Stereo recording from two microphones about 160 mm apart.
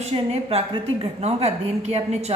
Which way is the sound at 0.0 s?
35° right (ahead or behind).